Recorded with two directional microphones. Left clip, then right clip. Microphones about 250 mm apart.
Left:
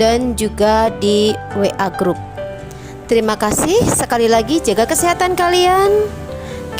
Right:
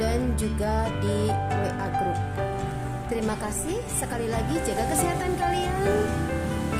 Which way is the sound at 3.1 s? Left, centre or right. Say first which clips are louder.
Left 16 dB; left.